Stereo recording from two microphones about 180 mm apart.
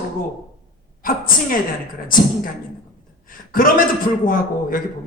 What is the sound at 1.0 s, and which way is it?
Speech, 50° left (ahead or behind).